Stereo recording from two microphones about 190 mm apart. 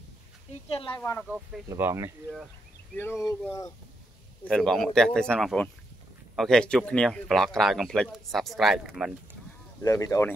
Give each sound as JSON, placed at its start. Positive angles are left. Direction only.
{"t": 0.5, "sound": "a sound", "side_deg": 30}
{"t": 1.2, "sound": "speech", "side_deg": -5}
{"t": 3.0, "sound": "speech", "side_deg": 15}
{"t": 4.5, "sound": "speech", "side_deg": 0}
{"t": 9.8, "sound": "speech", "side_deg": 20}